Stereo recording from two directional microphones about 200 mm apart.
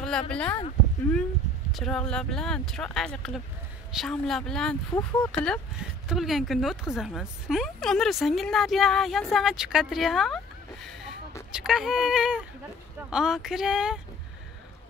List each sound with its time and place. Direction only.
0.0 s speech: 5° left (ahead or behind)
1.7 s speech: centre (ahead or behind)